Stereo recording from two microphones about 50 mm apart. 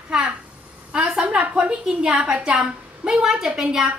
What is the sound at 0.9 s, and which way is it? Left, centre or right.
A woman's voice, right.